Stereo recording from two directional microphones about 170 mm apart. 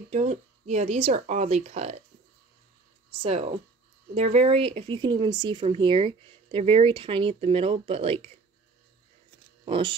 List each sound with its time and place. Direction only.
0.1 s speech: 40° right (ahead or behind)
3.1 s speech: 35° right (ahead or behind)
9.7 s speech: 30° right (ahead or behind)